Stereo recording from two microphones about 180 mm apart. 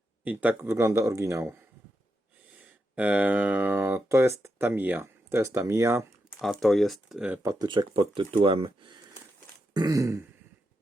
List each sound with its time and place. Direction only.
0.3 s speech: 10° right (ahead or behind)
6.4 s speech: centre (ahead or behind)
7.4 s speech: 20° right (ahead or behind)